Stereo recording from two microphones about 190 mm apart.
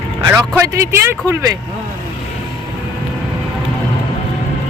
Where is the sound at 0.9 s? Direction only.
15° right (ahead or behind).